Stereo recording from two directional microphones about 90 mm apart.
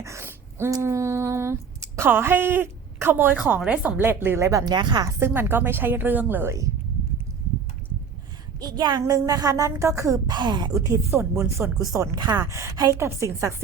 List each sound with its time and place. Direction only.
0.0 s a sound: 30° right (ahead or behind)
3.6 s speech: 15° right (ahead or behind); by 4.7 s 35° right (ahead or behind)
4.7 s a woman's voice: 55° right (ahead or behind)
5.0 s speech: 25° right (ahead or behind)
8.6 s a woman's voice: 55° right (ahead or behind)
9.0 s speech: 40° right (ahead or behind)
10.2 s speech: 55° right (ahead or behind)
10.8 s speech: 30° right (ahead or behind)